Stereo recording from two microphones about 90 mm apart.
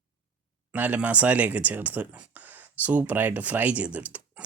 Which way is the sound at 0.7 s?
20° right (ahead or behind).